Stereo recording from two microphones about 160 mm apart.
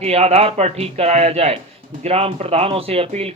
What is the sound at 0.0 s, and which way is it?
Speech, 40° right (ahead or behind).